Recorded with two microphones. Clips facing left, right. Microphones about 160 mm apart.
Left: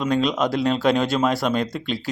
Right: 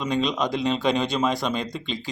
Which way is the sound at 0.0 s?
5° left (ahead or behind).